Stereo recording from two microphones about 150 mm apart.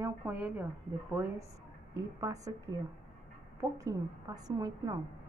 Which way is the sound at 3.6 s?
25° right (ahead or behind).